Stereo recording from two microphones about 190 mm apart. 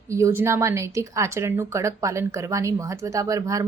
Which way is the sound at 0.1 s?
15° right (ahead or behind).